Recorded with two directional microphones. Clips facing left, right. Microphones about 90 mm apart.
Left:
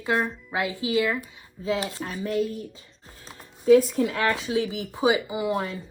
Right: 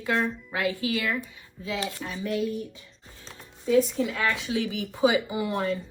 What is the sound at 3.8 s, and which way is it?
Speech, 50° left (ahead or behind).